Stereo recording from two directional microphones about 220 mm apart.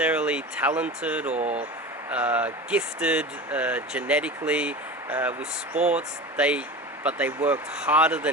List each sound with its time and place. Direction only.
0.0 s speech: 5° right (ahead or behind)
1.3 s speech: 30° right (ahead or behind)
2.0 s speech: 5° right (ahead or behind)